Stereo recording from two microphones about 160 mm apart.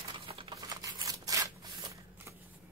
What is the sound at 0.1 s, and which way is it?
Tearing, 30° right (ahead or behind).